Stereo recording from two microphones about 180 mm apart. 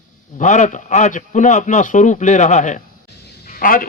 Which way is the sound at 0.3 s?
40° left (ahead or behind).